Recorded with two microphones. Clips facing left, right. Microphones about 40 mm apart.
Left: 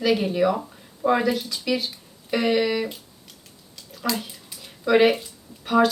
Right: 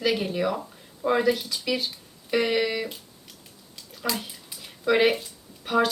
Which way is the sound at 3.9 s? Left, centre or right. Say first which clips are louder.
Left 3 dB; centre.